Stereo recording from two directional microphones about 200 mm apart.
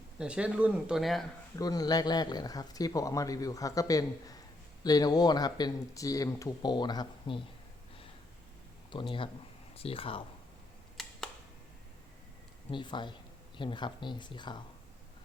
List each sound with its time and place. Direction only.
0.2 s speech: 5° right (ahead or behind)
1.5 s speech: 20° left (ahead or behind)
8.9 s speech: 25° left (ahead or behind)
11.0 s camera: centre (ahead or behind)
12.7 s speech: 25° left (ahead or behind)